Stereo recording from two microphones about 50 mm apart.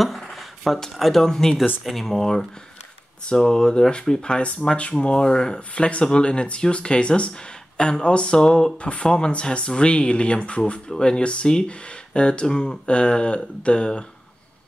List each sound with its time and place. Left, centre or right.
0.0 s speech: centre